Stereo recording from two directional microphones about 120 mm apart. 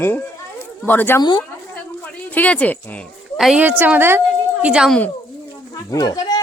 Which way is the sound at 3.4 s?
Centre (ahead or behind).